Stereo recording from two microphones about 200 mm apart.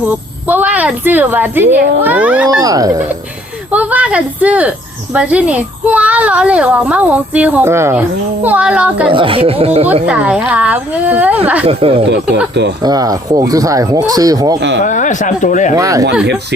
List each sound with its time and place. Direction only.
0.0 s a child's voice: 10° right (ahead or behind)
2.5 s a child's voice: 20° right (ahead or behind)
9.0 s speech: 25° right (ahead or behind)
10.1 s a child's voice: 5° right (ahead or behind)
11.6 s a child's voice: 30° right (ahead or behind)
14.8 s speech: 40° left (ahead or behind)
15.7 s a child's voice: 15° right (ahead or behind)